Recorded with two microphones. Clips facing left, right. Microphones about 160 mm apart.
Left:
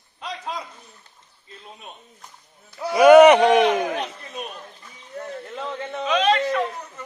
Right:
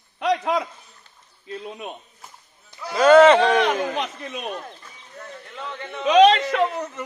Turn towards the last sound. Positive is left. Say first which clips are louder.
# right 3 dB
turn(degrees=-90)